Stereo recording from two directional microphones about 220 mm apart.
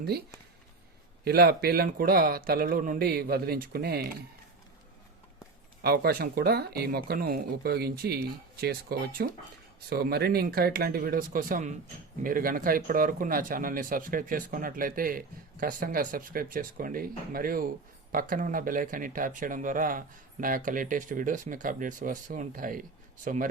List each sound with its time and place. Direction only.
1.2 s speech: 45° right (ahead or behind)
5.8 s speech: 45° right (ahead or behind)